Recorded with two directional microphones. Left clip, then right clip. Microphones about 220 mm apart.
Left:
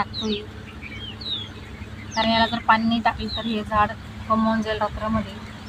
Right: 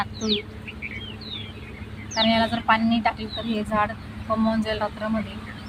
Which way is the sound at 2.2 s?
25° right (ahead or behind).